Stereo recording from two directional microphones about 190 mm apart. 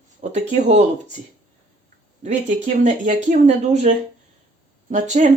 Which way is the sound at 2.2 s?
40° right (ahead or behind).